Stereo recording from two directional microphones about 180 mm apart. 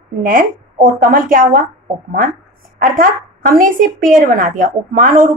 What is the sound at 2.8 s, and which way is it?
A woman's voice, 50° right (ahead or behind).